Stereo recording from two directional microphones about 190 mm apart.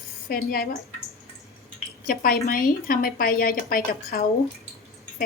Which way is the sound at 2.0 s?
50° left (ahead or behind).